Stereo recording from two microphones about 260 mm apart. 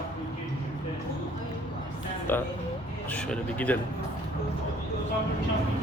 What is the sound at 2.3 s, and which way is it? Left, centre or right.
Speech, centre.